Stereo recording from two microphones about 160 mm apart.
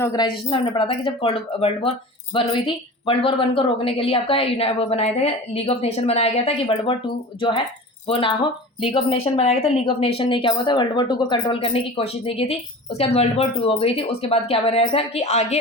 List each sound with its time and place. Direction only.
0.0 s speech: 20° left (ahead or behind)
0.3 s speech: 30° left (ahead or behind)
8.0 s speech: 35° left (ahead or behind)